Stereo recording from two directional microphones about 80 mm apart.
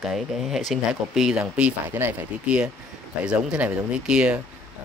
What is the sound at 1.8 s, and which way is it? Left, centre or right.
Speech, right.